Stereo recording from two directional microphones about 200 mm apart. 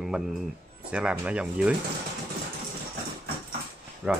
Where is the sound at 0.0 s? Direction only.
Centre (ahead or behind).